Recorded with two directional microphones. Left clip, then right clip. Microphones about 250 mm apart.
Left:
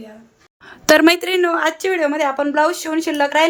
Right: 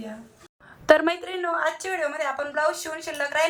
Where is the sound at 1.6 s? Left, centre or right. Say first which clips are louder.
Left 8 dB; left.